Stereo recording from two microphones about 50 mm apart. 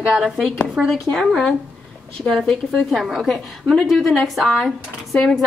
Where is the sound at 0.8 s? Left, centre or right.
Right.